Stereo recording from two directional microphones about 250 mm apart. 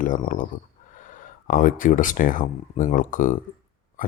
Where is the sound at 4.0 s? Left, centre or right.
Left.